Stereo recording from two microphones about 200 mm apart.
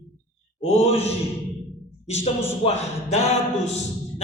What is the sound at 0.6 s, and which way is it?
A man's voice, 30° left (ahead or behind).